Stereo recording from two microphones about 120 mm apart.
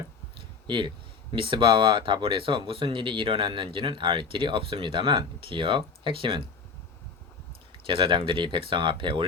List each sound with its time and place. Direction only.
0.3 s a sound: 40° right (ahead or behind)
1.3 s speech: 45° right (ahead or behind)
7.9 s speech: 45° right (ahead or behind)